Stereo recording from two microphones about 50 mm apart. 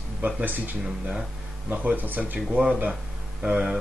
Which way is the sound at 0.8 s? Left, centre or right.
Centre.